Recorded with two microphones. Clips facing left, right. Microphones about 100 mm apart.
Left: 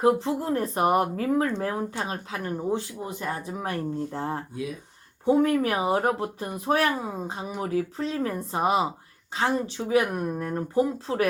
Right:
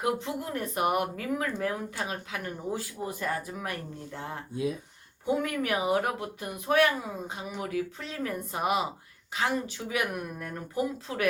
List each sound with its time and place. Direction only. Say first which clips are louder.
0.0 s speech: left 8 dB; 35° left (ahead or behind)